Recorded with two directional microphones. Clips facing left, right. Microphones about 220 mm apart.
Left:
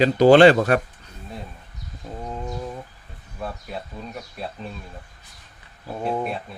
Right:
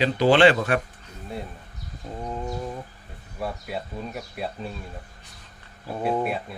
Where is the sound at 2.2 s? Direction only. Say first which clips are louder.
Right 1 dB; centre (ahead or behind).